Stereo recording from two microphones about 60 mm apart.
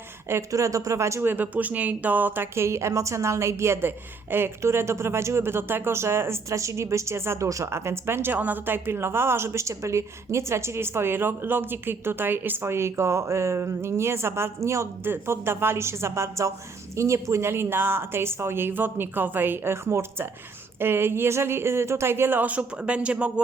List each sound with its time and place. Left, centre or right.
0.5 s speech: right
1.2 s a woman's voice: right
7.7 s a woman's voice: right
15.0 s a woman's voice: right
22.4 s speech: right